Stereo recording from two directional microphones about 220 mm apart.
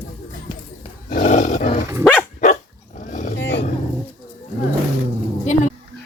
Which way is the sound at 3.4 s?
50° left (ahead or behind).